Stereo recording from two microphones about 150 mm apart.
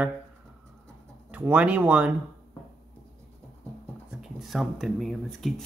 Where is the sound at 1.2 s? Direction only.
10° right (ahead or behind).